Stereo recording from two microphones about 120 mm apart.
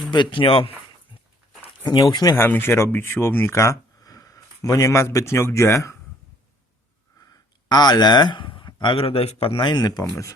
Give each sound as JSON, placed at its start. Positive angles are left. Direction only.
{"t": 0.1, "sound": "speech", "side_deg": 40}
{"t": 1.8, "sound": "speech", "side_deg": 35}
{"t": 2.3, "sound": "speech", "side_deg": 20}
{"t": 7.2, "sound": "a man's voice", "side_deg": 30}